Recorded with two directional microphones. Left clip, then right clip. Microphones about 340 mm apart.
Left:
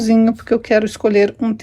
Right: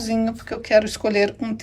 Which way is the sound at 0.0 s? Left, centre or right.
Centre.